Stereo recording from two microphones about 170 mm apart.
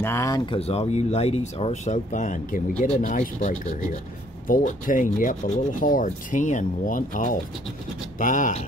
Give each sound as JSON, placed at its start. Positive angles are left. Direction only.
{"t": 0.0, "sound": "speech", "side_deg": 15}
{"t": 0.5, "sound": "speech", "side_deg": 40}
{"t": 3.0, "sound": "rub", "side_deg": 45}